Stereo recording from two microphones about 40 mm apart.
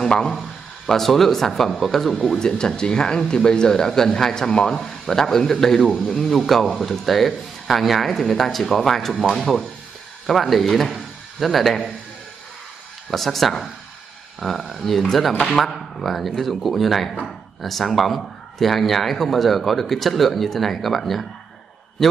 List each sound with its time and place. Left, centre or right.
0.0 s speech: centre
0.4 s speech: centre
2.3 s speech: centre
13.1 s speech: centre
14.7 s speech: centre